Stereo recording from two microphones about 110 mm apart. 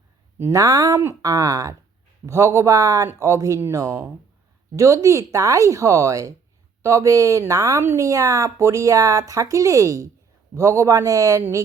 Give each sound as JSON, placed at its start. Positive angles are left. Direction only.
{"t": 0.3, "sound": "speech", "side_deg": -25}